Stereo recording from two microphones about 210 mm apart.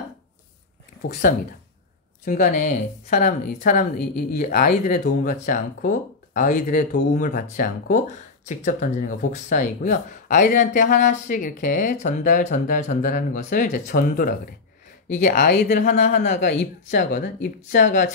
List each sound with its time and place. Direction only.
2.2 s speech: 40° left (ahead or behind)